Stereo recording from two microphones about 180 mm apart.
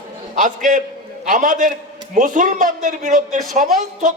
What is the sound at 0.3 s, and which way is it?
A man's voice, 45° right (ahead or behind).